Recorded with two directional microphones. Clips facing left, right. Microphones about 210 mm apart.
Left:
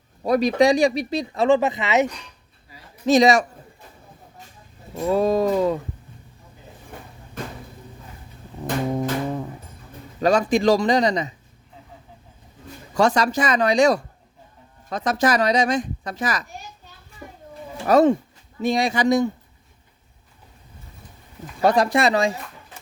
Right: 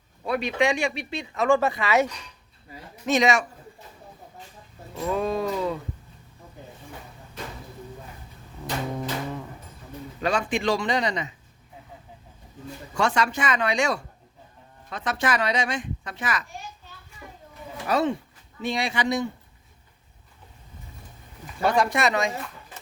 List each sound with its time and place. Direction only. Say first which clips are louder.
0.2 s speech: left 7 dB; 40° left (ahead or behind)
1.5 s speech: left 2 dB; 20° left (ahead or behind)
3.1 s speech: left 6 dB; 35° left (ahead or behind)
5.1 s speech: left 7 dB; 40° left (ahead or behind)
8.6 s music: left 6 dB; 40° left (ahead or behind)
10.2 s speech: left 7 dB; 40° left (ahead or behind)
12.9 s speech: left 5 dB; 40° left (ahead or behind)
17.2 s a sound: left 4 dB; 35° left (ahead or behind)
17.8 s speech: left 8 dB; 45° left (ahead or behind)
21.6 s speech: left 4 dB; 35° left (ahead or behind)